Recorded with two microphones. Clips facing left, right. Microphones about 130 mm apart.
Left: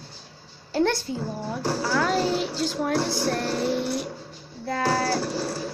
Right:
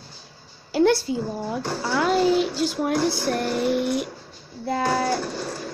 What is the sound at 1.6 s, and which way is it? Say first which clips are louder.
Speech: left 1 dB; 35° left (ahead or behind).